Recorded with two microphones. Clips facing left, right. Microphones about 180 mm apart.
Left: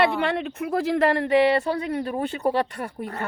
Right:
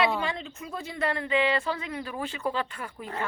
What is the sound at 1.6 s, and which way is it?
Speech, 45° left (ahead or behind).